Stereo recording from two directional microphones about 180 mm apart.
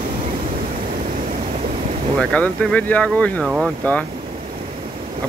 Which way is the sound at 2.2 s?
5° left (ahead or behind).